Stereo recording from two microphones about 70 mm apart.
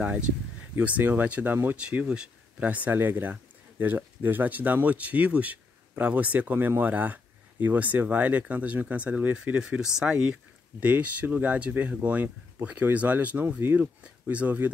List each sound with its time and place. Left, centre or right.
0.0 s speech: right
1.8 s speech: centre